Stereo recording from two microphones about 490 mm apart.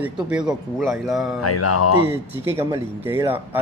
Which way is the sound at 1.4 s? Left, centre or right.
Left.